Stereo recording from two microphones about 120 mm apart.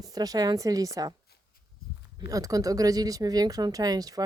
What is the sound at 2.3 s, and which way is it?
Speech, 30° right (ahead or behind).